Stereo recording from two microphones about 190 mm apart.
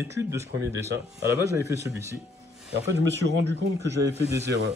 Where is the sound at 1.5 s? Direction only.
15° right (ahead or behind).